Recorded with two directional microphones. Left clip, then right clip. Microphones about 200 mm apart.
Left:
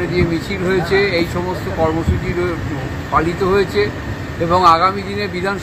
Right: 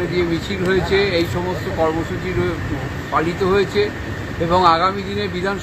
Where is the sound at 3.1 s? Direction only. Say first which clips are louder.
Left 2 dB; 5° left (ahead or behind).